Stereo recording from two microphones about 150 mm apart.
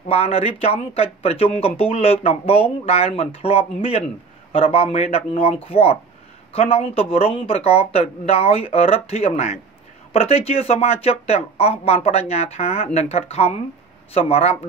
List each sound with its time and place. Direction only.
0.0 s speech: 40° left (ahead or behind)